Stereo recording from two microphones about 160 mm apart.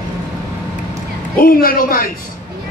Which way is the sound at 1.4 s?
65° left (ahead or behind).